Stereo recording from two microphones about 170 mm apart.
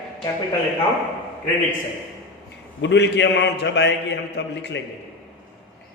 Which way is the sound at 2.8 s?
90° left.